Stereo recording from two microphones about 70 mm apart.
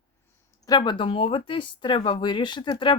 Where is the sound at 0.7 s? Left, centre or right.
Left.